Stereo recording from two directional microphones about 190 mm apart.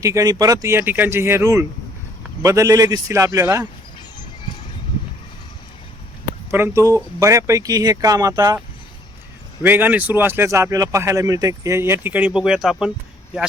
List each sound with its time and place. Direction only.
0.0 s speech: 15° right (ahead or behind)
6.5 s speech: 15° right (ahead or behind)
9.6 s speech: 10° right (ahead or behind)